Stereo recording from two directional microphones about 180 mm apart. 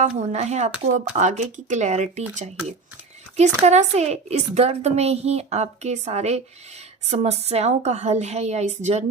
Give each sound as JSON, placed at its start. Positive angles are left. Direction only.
{"t": 0.0, "sound": "speech", "side_deg": -40}
{"t": 3.3, "sound": "speech", "side_deg": -40}